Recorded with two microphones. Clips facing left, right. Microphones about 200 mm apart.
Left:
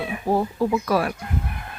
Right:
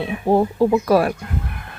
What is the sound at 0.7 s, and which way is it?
Speech, 40° right (ahead or behind).